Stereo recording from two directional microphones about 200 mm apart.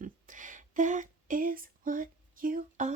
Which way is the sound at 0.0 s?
40° right (ahead or behind).